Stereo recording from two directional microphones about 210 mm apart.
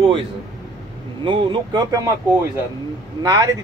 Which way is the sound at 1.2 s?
25° right (ahead or behind).